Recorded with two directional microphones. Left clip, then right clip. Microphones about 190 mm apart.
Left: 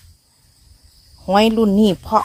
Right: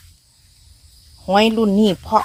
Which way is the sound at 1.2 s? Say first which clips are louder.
Left 1 dB; 5° left (ahead or behind).